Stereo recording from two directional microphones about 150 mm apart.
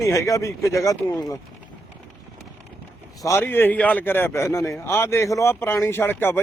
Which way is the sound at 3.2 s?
15° left (ahead or behind).